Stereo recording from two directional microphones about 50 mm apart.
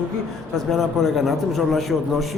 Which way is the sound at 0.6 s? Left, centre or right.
Centre.